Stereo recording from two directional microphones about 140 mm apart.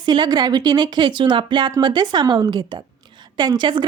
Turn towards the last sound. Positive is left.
turn(degrees=-35)  # may be behind; listen again after turning